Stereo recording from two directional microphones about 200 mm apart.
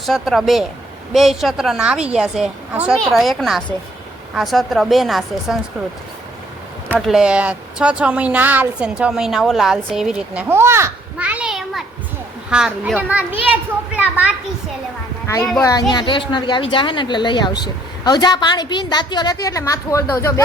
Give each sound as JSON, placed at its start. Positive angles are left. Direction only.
{"t": 0.0, "sound": "speech", "side_deg": 0}
{"t": 6.9, "sound": "a child's voice", "side_deg": -5}
{"t": 15.9, "sound": "a woman's voice", "side_deg": 20}